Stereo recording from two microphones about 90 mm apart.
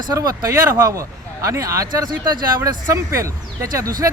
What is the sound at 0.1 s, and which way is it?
Speech, 40° right (ahead or behind).